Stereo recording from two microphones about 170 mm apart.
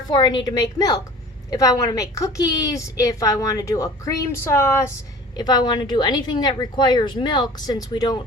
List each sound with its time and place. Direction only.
0.1 s a woman's voice: 25° left (ahead or behind)